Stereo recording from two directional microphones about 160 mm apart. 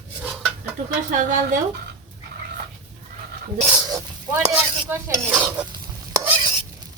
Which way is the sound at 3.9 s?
15° right (ahead or behind).